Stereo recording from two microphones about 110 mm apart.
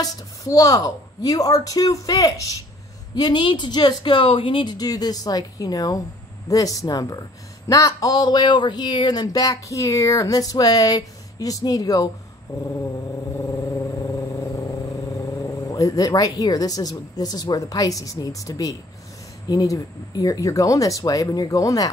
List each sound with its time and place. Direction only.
0.0 s speech: 30° left (ahead or behind)
3.2 s speech: 45° left (ahead or behind)
13.4 s vehicle: 25° left (ahead or behind)
15.7 s speech: 35° left (ahead or behind)